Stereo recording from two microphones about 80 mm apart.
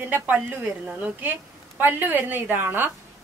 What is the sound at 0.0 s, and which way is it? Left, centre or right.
A woman's voice, right.